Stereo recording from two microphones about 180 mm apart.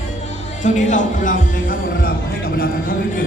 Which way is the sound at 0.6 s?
45° left (ahead or behind).